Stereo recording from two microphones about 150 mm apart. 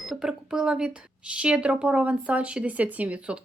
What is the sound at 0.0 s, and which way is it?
Speech, 5° right (ahead or behind).